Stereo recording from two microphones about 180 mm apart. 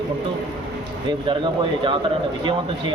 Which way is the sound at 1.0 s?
25° right (ahead or behind).